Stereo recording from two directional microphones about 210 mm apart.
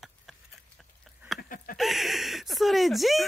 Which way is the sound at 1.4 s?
40° left (ahead or behind).